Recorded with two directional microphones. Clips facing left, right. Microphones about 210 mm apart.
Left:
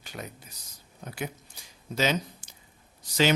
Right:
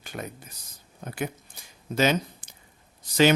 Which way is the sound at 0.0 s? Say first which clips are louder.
Right 4 dB; 50° right (ahead or behind).